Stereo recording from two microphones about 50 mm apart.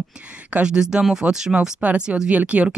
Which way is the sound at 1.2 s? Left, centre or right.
Right.